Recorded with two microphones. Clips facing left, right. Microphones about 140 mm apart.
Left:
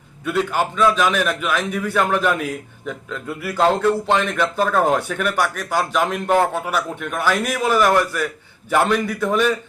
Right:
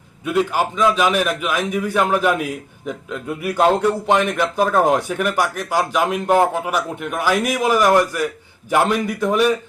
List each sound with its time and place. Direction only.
0.3 s a man's voice: 10° right (ahead or behind)